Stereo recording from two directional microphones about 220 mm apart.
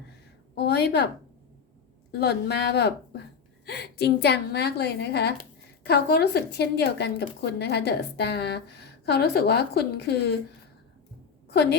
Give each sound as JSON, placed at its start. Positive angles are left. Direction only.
{"t": 0.5, "sound": "a woman's voice", "side_deg": 50}
{"t": 2.1, "sound": "a woman's voice", "side_deg": 50}
{"t": 11.4, "sound": "a sound", "side_deg": 50}